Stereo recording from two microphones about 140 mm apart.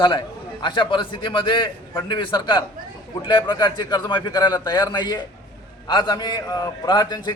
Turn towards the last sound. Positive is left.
turn(degrees=30)  # may be behind; listen again after turning